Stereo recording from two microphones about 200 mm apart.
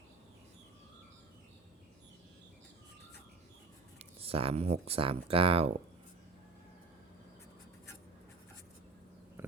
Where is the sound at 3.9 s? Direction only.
30° right (ahead or behind).